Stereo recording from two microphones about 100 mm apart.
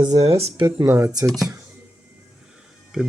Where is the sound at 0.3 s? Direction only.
85° right.